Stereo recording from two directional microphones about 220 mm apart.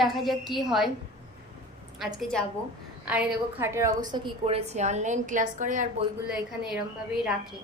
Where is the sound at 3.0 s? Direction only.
5° right (ahead or behind); by 5.8 s 35° right (ahead or behind).